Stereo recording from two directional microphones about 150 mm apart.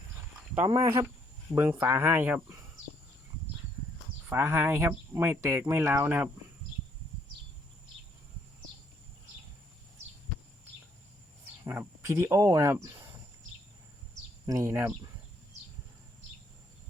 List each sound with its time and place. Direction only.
0.7 s speech: 25° right (ahead or behind)
1.5 s speech: 15° right (ahead or behind)
4.3 s speech: 15° right (ahead or behind)
11.6 s speech: 20° right (ahead or behind)
14.4 s speech: 20° right (ahead or behind)